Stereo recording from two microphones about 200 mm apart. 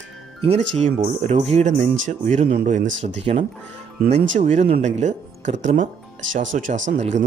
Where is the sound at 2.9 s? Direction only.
65° right (ahead or behind).